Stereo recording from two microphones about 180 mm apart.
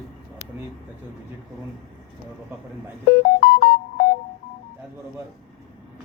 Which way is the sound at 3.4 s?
60° left (ahead or behind).